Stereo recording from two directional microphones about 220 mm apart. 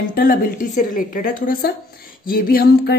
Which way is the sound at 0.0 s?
40° left (ahead or behind).